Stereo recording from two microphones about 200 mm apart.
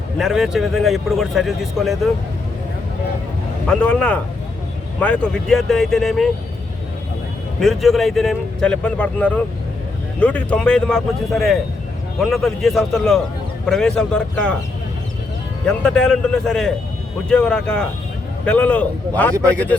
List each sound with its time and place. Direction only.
0.2 s a man's voice: centre (ahead or behind)
3.7 s a man's voice: 5° left (ahead or behind)
7.6 s a man's voice: centre (ahead or behind)
15.6 s a man's voice: 5° left (ahead or behind)